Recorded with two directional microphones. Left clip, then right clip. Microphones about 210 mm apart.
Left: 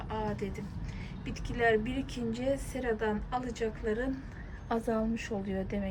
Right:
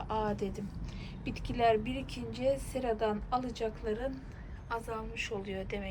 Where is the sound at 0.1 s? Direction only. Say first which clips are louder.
Right 2 dB; 50° right (ahead or behind).